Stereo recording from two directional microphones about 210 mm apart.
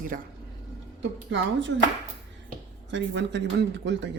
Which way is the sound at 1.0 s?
60° right (ahead or behind).